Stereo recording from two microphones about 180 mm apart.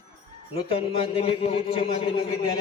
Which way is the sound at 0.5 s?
30° left (ahead or behind).